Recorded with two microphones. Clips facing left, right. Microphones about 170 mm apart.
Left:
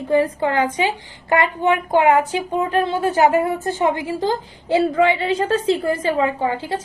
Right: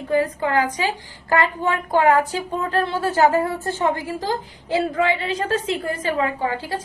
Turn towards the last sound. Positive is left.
turn(degrees=25)  # may be behind; listen again after turning